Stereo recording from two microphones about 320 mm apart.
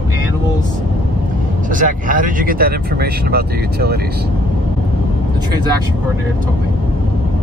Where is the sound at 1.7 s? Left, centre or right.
Right.